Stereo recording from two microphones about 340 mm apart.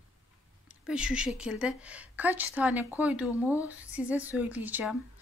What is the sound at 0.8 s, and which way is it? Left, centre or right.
Speech, centre.